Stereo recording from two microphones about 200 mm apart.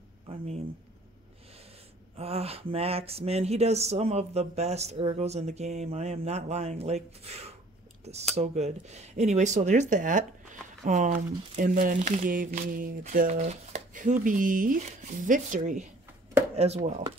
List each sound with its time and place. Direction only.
2.1 s speech: 30° right (ahead or behind)